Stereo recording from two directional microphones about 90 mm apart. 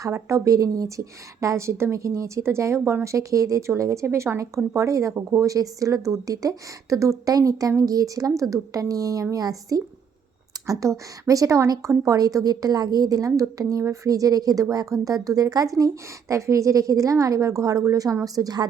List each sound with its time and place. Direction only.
0.0 s a woman's voice: 30° right (ahead or behind)